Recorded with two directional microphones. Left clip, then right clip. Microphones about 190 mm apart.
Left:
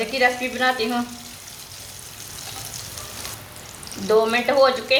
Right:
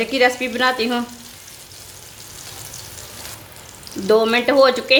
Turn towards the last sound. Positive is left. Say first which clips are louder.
# right 3 dB
turn(degrees=-55)  # may be behind; listen again after turning